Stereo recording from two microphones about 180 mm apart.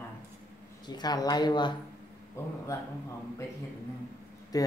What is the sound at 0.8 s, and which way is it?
Speech, 25° left (ahead or behind).